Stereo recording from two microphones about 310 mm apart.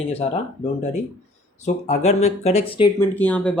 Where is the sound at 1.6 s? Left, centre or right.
Left.